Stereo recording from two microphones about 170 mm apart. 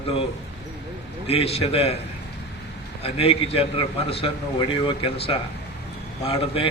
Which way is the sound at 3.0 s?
35° left (ahead or behind).